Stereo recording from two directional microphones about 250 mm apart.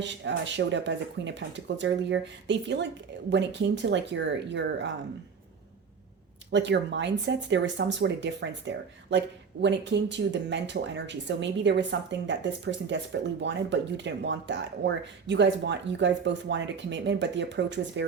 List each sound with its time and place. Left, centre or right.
0.0 s speech: right
6.5 s speech: right